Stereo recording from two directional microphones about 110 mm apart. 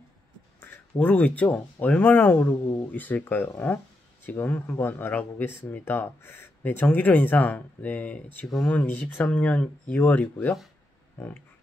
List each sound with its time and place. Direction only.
0.6 s speech: 15° left (ahead or behind)